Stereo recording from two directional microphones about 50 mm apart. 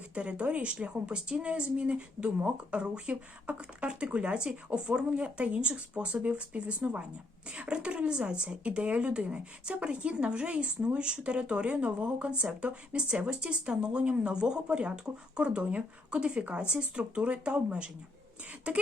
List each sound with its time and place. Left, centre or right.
0.1 s speech: right